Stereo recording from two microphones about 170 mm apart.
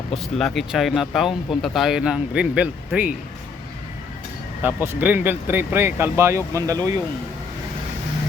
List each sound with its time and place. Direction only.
0.1 s speech: centre (ahead or behind)
4.6 s speech: 10° right (ahead or behind)